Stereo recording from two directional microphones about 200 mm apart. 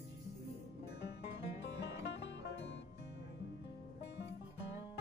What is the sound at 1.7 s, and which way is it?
Music, 60° left (ahead or behind).